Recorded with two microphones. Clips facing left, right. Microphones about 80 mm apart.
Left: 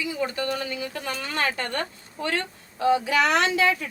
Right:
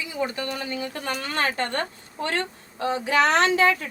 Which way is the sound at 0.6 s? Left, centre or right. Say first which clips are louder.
Right 1 dB; right.